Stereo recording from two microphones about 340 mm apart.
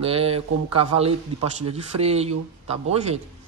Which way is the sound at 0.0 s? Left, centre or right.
Centre.